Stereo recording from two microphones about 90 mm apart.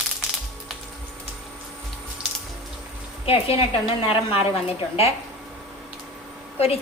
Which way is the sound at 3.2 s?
90° left.